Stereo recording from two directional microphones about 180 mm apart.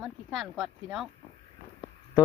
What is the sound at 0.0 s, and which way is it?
Speech, centre (ahead or behind).